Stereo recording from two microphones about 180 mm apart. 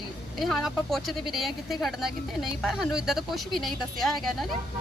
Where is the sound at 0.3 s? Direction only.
Centre (ahead or behind).